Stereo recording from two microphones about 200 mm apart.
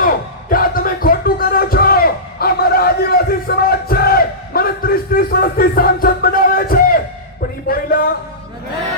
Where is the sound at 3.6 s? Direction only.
50° left (ahead or behind).